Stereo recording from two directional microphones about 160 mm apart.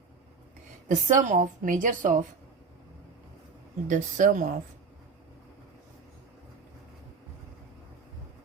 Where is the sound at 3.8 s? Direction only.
50° right (ahead or behind).